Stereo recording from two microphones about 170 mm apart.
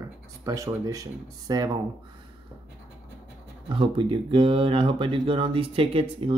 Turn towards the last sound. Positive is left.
turn(degrees=-35)  # may be behind; listen again after turning